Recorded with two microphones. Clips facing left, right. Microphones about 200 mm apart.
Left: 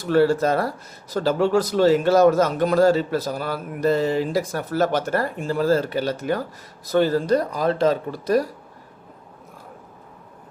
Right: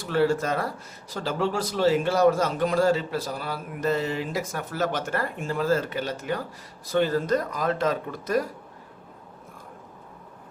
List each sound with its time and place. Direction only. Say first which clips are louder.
0.0 s a man's voice: left 5 dB; 40° left (ahead or behind)